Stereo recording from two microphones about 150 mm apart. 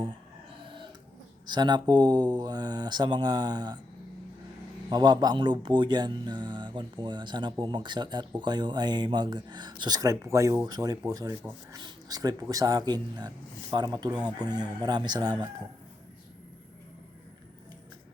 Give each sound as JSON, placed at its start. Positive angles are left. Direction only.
{"t": 1.5, "sound": "speech", "side_deg": -30}
{"t": 4.9, "sound": "speech", "side_deg": -30}